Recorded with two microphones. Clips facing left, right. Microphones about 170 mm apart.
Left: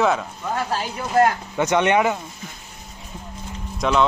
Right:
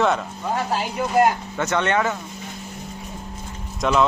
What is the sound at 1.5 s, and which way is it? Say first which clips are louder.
Speech: left 3 dB; 15° left (ahead or behind).